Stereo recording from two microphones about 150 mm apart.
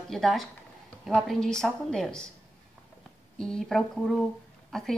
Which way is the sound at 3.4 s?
5° left (ahead or behind).